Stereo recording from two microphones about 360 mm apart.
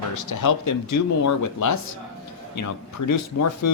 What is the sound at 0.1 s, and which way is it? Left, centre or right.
Speech, left.